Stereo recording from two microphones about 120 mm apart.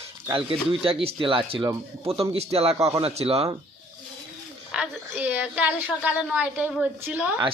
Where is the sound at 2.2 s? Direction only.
55° right (ahead or behind).